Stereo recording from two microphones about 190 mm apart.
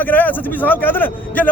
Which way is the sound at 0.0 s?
10° left (ahead or behind).